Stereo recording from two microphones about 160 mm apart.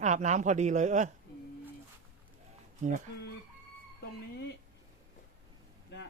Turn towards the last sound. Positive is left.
turn(degrees=90)